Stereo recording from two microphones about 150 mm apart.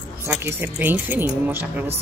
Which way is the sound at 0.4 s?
15° right (ahead or behind).